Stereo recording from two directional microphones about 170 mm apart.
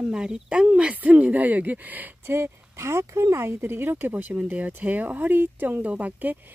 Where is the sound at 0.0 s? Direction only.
5° right (ahead or behind).